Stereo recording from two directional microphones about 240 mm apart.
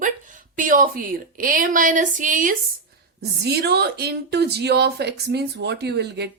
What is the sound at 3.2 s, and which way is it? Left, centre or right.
A woman's voice, right.